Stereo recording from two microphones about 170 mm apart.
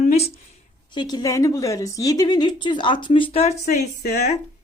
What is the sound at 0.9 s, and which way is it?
Speech, 25° left (ahead or behind).